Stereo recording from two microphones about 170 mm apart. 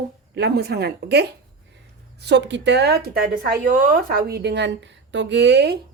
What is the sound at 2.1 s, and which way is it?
Speech, 90° right.